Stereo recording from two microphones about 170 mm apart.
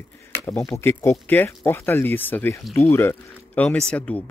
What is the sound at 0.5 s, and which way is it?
Speech, 15° left (ahead or behind).